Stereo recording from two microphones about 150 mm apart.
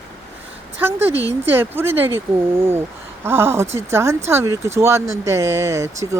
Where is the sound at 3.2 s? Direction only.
15° right (ahead or behind).